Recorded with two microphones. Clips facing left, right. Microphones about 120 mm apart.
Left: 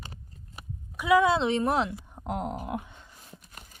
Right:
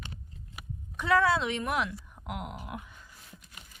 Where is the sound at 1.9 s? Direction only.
30° left (ahead or behind).